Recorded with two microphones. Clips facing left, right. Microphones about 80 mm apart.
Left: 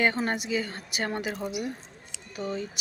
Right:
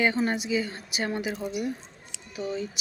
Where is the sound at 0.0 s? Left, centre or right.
Left.